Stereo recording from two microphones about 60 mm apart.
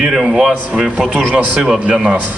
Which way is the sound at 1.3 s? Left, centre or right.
Centre.